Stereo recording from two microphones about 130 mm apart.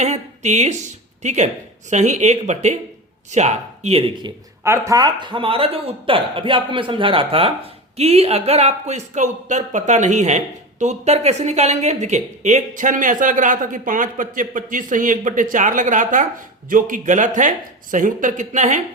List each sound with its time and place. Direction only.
0.0 s a man's voice: 60° right (ahead or behind)
4.6 s a man's voice: 25° right (ahead or behind); by 16.2 s 80° right
16.6 s a man's voice: 90° right
17.9 s speech: 85° right; by 18.8 s 65° right (ahead or behind)